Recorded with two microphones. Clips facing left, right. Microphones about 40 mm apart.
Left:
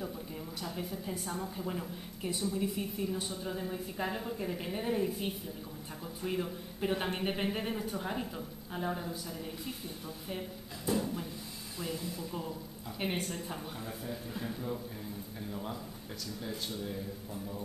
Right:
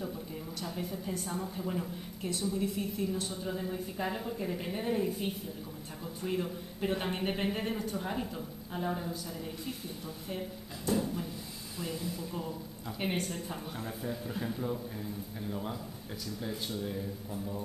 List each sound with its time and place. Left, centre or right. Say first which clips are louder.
0.6 s speech: right 1 dB; centre
10.9 s a sound: right 1 dB; centre
11.8 s speech: right 1 dB; centre
14.0 s a man's voice: right 4 dB; centre